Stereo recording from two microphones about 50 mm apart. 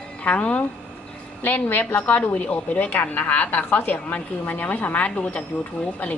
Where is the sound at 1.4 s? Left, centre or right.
Left.